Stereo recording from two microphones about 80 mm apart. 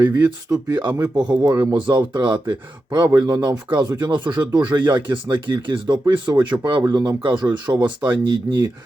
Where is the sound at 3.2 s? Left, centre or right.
Right.